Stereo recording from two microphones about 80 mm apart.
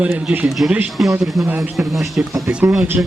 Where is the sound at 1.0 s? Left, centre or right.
Centre.